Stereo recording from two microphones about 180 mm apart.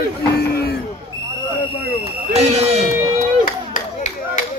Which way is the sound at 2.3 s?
35° right (ahead or behind).